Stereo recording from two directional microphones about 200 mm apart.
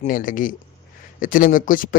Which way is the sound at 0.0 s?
40° left (ahead or behind).